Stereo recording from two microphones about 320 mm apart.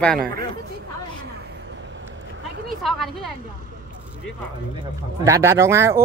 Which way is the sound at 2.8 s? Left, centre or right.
Centre.